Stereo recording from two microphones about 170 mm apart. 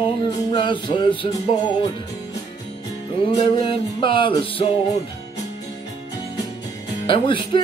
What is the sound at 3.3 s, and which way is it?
Music, 30° left (ahead or behind).